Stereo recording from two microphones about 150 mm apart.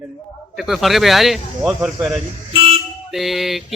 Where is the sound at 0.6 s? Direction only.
Centre (ahead or behind).